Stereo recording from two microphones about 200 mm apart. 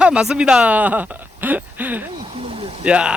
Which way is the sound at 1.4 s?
10° right (ahead or behind).